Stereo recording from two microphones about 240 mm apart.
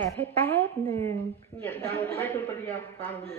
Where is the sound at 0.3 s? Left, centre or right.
Centre.